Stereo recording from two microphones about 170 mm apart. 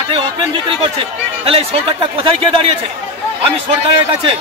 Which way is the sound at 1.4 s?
35° right (ahead or behind).